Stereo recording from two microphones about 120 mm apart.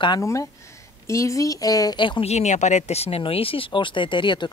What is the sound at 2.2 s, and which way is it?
Speech, 70° left (ahead or behind).